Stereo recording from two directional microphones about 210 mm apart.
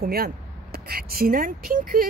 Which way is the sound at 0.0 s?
45° right (ahead or behind).